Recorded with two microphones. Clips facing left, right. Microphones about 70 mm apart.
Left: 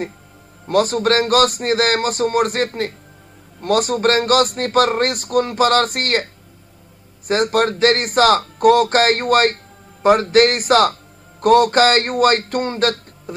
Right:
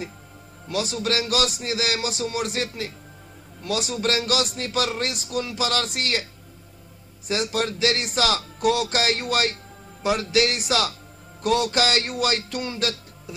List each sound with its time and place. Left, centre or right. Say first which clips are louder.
0.7 s speech: left 10 dB; left
7.2 s speech: left 8 dB; left